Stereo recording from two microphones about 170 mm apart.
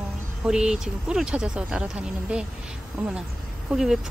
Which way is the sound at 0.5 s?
5° right (ahead or behind).